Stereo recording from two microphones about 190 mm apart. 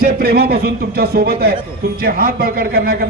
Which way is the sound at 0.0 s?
55° right (ahead or behind).